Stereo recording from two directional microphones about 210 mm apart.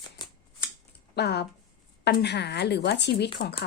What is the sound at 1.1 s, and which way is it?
Speech, 50° left (ahead or behind).